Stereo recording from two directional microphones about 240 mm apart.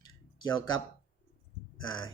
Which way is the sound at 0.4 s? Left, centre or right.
Centre.